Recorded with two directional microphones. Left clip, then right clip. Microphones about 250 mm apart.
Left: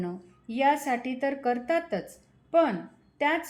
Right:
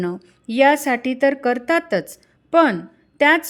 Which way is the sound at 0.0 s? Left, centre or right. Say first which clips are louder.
Right 10 dB; right.